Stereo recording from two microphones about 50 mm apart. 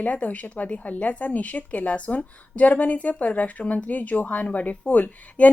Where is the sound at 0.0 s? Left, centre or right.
Left.